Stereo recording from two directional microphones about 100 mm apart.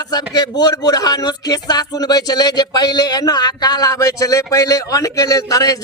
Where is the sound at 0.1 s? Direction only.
45° left (ahead or behind).